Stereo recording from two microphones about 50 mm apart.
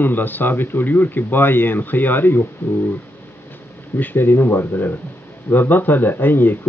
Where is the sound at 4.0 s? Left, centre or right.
Left.